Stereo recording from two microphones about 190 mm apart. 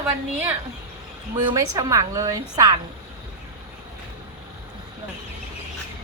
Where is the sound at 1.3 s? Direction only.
20° right (ahead or behind).